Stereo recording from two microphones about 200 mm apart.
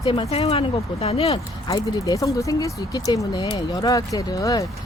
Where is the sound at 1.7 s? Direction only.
15° left (ahead or behind).